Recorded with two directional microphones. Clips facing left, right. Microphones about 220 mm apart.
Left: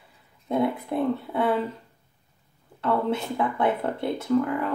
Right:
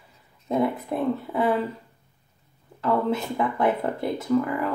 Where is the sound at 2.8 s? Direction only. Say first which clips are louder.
Right 1 dB; centre (ahead or behind).